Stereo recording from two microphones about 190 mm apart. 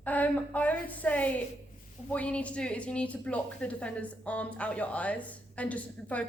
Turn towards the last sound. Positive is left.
turn(degrees=5)  # may be behind; listen again after turning